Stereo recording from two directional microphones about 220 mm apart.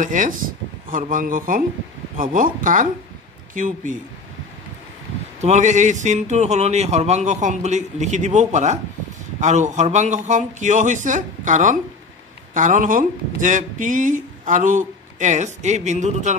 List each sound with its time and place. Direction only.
0.0 s speech: 35° right (ahead or behind)
5.4 s speech: 35° right (ahead or behind)